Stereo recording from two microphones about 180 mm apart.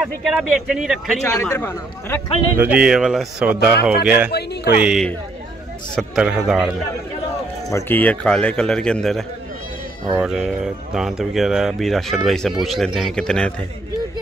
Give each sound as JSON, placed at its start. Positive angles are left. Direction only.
{"t": 0.0, "sound": "speech", "side_deg": 0}
{"t": 1.2, "sound": "speech", "side_deg": 15}
{"t": 2.5, "sound": "speech", "side_deg": -10}
{"t": 4.3, "sound": "speech", "side_deg": 65}
{"t": 4.7, "sound": "speech", "side_deg": 0}
{"t": 7.7, "sound": "speech", "side_deg": 10}